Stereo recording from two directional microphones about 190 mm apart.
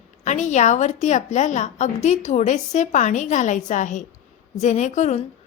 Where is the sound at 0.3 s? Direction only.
40° left (ahead or behind).